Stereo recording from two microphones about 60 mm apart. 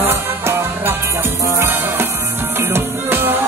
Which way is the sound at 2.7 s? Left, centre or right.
Right.